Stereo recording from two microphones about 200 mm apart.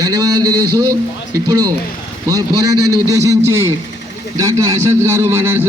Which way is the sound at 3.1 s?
15° right (ahead or behind).